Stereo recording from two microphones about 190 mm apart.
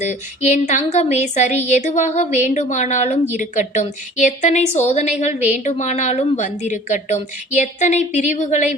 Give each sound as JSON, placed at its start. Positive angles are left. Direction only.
{"t": 0.0, "sound": "speech", "side_deg": 40}